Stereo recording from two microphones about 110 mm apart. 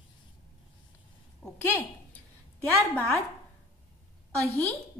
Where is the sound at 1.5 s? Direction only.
20° left (ahead or behind).